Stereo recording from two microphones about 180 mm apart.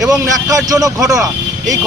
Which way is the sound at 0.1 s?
20° right (ahead or behind).